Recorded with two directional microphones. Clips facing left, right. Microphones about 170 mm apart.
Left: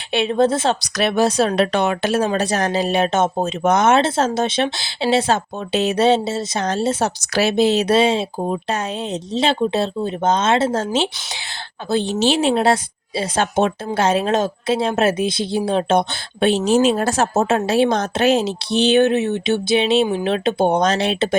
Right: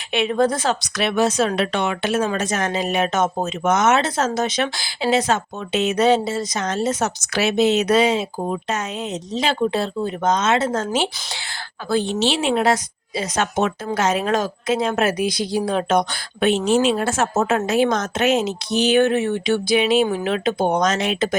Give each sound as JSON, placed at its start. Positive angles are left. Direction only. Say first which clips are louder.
{"t": 0.1, "sound": "a woman's voice", "louder": "left 2 dB", "side_deg": 30}
{"t": 12.0, "sound": "a woman's voice", "louder": "left 3 dB", "side_deg": 40}